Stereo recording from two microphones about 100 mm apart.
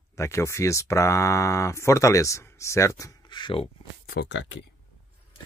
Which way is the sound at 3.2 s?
50° left (ahead or behind).